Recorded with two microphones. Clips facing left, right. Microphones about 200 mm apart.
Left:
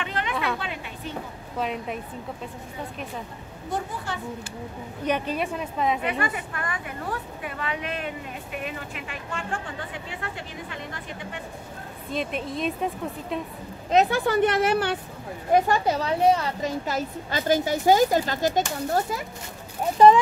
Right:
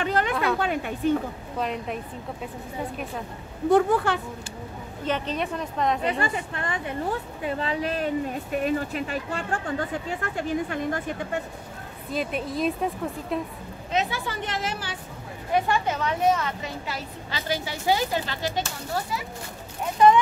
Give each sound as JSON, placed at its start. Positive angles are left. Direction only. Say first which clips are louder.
{"t": 0.0, "sound": "a sound", "louder": "right 6 dB", "side_deg": -40}
{"t": 0.3, "sound": "a sound", "louder": "right 3 dB", "side_deg": 0}
{"t": 0.6, "sound": "speech", "louder": "right 8 dB", "side_deg": -50}
{"t": 1.6, "sound": "speech", "louder": "even", "side_deg": 0}
{"t": 3.7, "sound": "a woman's voice", "louder": "right 11 dB", "side_deg": -75}
{"t": 5.0, "sound": "a woman's voice", "louder": "left 1 dB", "side_deg": 10}
{"t": 6.0, "sound": "a woman's voice", "louder": "right 1 dB", "side_deg": -30}
{"t": 12.1, "sound": "speech", "louder": "right 1 dB", "side_deg": 0}
{"t": 13.9, "sound": "speech", "louder": "left 8 dB", "side_deg": 50}
{"t": 15.5, "sound": "a woman's voice", "louder": "left 3 dB", "side_deg": 40}